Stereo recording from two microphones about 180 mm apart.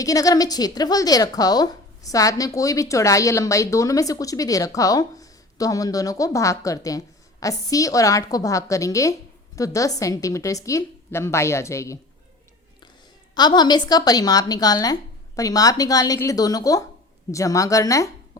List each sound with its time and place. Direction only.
0.0 s a woman's voice: 20° left (ahead or behind)
13.3 s a woman's voice: 25° left (ahead or behind)